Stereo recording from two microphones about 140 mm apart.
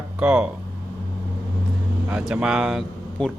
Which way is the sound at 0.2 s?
10° right (ahead or behind).